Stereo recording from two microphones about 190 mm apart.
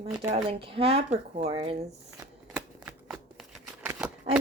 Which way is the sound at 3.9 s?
5° right (ahead or behind).